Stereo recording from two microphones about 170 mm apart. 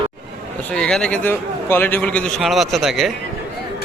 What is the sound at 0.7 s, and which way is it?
A man's voice, 5° left (ahead or behind).